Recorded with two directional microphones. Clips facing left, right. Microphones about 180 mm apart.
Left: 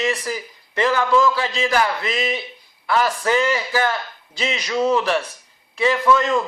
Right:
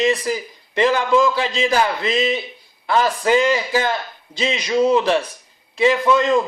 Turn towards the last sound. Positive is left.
turn(degrees=-20)  # may be behind; listen again after turning